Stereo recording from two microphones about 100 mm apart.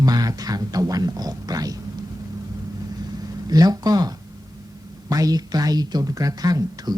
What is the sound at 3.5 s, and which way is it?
Speech, 40° right (ahead or behind).